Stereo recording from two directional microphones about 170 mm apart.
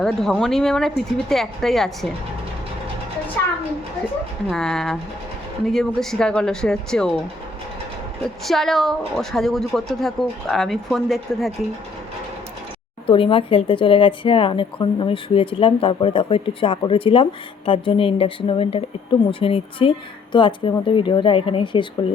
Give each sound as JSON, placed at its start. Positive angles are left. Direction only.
{"t": 0.0, "sound": "speech", "side_deg": 5}
{"t": 4.4, "sound": "speech", "side_deg": 5}
{"t": 8.2, "sound": "speech", "side_deg": 0}
{"t": 13.1, "sound": "speech", "side_deg": 30}